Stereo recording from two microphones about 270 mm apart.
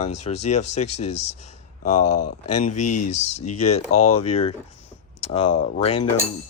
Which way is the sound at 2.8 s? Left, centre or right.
Left.